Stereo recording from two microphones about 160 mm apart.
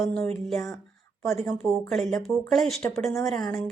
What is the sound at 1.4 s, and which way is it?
A woman's voice, centre (ahead or behind).